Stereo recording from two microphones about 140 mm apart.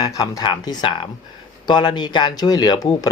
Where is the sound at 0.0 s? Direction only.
25° left (ahead or behind).